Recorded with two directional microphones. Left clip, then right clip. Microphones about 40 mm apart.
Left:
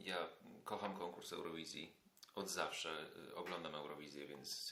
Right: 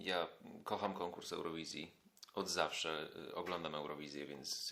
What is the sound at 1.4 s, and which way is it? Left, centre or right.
Speech, centre.